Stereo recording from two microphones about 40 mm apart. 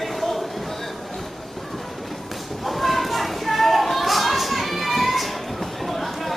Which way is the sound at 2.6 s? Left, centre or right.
Centre.